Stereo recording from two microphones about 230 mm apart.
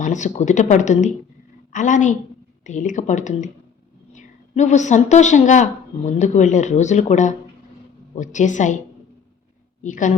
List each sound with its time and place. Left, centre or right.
0.0 s speech: left
9.8 s speech: left